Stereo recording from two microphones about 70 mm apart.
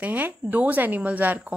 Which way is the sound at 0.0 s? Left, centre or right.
Right.